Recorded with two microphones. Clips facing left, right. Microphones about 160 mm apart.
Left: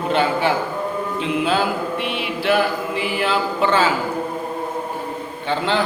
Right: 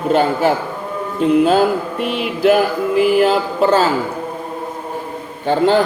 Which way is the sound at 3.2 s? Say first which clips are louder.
Right 6 dB; 40° right (ahead or behind).